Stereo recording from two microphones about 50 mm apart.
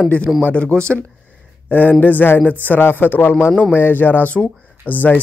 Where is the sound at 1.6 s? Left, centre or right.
Left.